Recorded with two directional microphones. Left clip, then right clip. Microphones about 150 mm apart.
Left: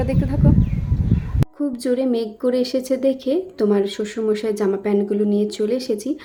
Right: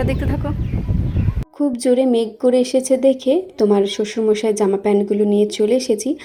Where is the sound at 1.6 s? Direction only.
15° right (ahead or behind).